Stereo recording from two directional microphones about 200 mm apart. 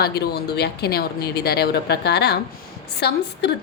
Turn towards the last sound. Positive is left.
turn(degrees=55)  # may be behind; listen again after turning